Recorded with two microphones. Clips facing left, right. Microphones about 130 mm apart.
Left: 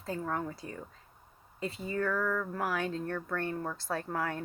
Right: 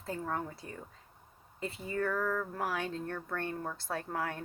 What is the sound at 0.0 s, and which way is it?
Speech, 30° right (ahead or behind).